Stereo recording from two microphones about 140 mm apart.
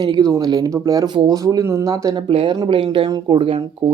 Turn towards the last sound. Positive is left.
turn(degrees=-40)  # may be behind; listen again after turning